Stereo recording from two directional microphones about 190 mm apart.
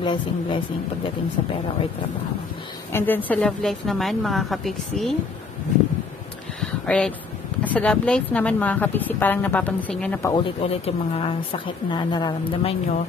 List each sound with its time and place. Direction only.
0.0 s speech: 25° left (ahead or behind)
2.9 s a woman's voice: 10° left (ahead or behind)
6.9 s a woman's voice: 5° left (ahead or behind)
10.3 s speech: 30° left (ahead or behind)